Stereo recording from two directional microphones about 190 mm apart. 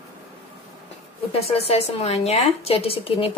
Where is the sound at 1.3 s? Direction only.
30° left (ahead or behind).